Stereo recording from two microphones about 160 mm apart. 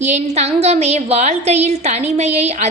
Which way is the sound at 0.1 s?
45° right (ahead or behind).